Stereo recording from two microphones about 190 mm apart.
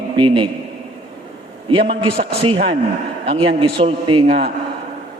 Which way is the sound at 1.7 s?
30° right (ahead or behind).